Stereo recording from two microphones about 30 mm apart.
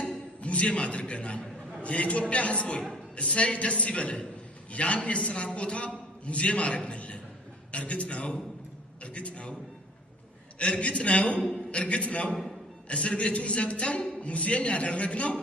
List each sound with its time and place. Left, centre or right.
0.0 s a sound: left
1.8 s a man's voice: left
4.7 s a man's voice: left
10.6 s a man's voice: left